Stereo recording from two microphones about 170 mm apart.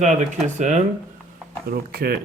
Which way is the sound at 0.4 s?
45° right (ahead or behind).